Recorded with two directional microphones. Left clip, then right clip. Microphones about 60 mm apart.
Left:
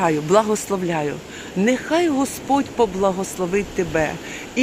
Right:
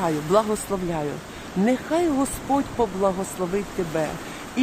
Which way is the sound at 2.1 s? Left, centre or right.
Right.